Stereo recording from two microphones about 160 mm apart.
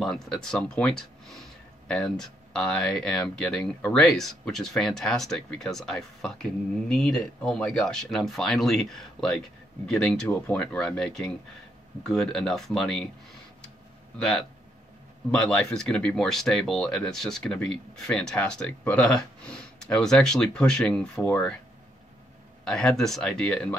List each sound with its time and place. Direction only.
0.0 s speech: centre (ahead or behind)
14.1 s speech: centre (ahead or behind)
22.7 s speech: 5° left (ahead or behind)